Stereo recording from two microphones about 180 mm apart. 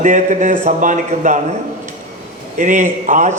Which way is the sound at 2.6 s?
45° right (ahead or behind).